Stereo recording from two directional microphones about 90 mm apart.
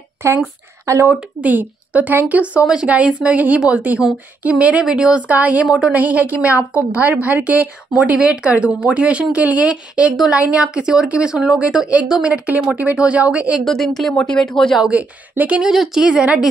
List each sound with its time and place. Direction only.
0.2 s a woman's voice: 25° right (ahead or behind)
13.7 s speech: 5° left (ahead or behind)
14.1 s speech: 15° left (ahead or behind)
14.8 s a woman's voice: 15° right (ahead or behind)
15.7 s a woman's voice: 5° right (ahead or behind)